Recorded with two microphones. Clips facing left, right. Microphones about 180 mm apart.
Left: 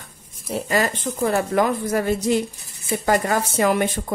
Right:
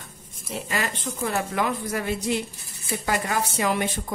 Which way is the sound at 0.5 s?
40° left (ahead or behind).